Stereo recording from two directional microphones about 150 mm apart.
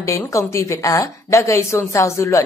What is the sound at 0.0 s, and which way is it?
A woman's voice, 20° left (ahead or behind).